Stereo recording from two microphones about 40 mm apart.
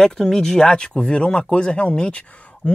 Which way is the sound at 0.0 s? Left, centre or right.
Centre.